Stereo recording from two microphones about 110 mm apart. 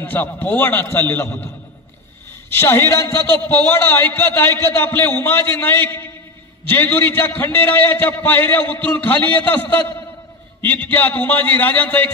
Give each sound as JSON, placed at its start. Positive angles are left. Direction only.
{"t": 0.0, "sound": "a man's voice", "side_deg": 15}
{"t": 2.5, "sound": "a man's voice", "side_deg": 25}